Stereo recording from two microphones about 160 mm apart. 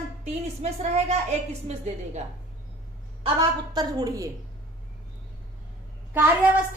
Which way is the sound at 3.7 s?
25° right (ahead or behind).